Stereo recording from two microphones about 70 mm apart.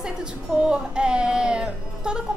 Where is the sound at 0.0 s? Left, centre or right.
Centre.